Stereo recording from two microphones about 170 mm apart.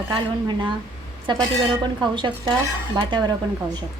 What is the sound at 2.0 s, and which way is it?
A woman's voice, 25° right (ahead or behind).